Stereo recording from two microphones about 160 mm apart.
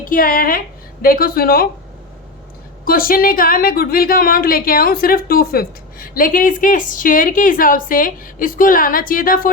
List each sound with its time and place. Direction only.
0.0 s a woman's voice: 60° left (ahead or behind)
2.8 s speech: 65° left (ahead or behind)